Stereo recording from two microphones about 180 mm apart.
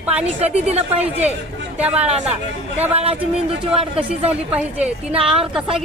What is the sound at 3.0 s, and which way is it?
Speech, 30° right (ahead or behind).